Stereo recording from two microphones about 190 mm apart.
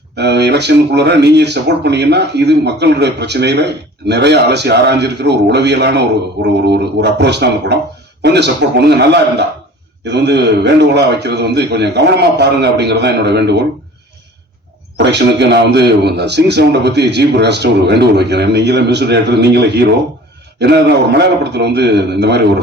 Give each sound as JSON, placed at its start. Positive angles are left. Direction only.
{"t": 0.2, "sound": "speech", "side_deg": -60}
{"t": 14.9, "sound": "speech", "side_deg": -65}